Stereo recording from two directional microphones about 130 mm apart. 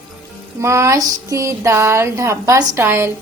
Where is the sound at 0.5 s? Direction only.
20° right (ahead or behind).